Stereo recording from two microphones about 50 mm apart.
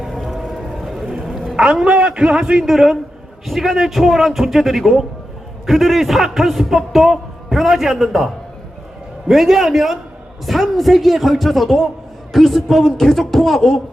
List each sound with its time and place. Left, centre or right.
0.0 s a sound: centre
0.7 s music: centre
1.5 s a man's voice: centre
2.6 s a man's voice: centre
9.3 s a man's voice: centre